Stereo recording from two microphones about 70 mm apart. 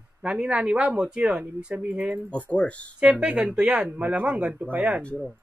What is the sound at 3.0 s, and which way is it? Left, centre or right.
Speech, centre.